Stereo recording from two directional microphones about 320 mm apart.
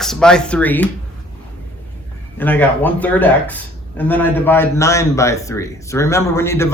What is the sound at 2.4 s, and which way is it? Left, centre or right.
Speech, centre.